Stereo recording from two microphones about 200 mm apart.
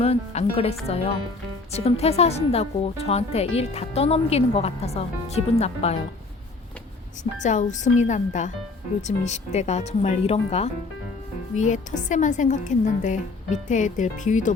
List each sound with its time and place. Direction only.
0.0 s speech: 30° left (ahead or behind)
7.4 s speech: 35° left (ahead or behind)